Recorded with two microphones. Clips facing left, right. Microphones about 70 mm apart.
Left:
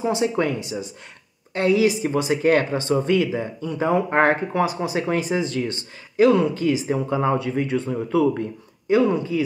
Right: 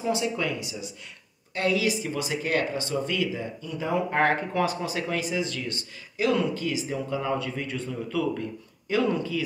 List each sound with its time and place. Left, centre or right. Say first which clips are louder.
0.0 s speech: left 5 dB; left
0.4 s speech: left 7 dB; left
1.5 s speech: left 7 dB; left
3.3 s speech: left 6 dB; left
7.3 s speech: left 8 dB; left